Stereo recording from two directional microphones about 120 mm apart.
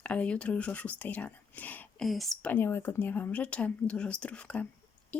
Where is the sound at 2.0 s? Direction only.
Centre (ahead or behind).